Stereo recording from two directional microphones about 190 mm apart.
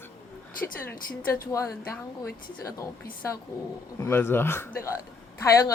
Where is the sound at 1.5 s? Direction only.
15° left (ahead or behind).